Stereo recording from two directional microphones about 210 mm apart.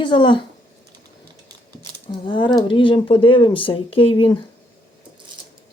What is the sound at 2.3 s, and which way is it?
Speech, 20° left (ahead or behind).